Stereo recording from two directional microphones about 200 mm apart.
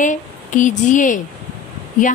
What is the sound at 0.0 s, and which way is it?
A woman's voice, 40° left (ahead or behind).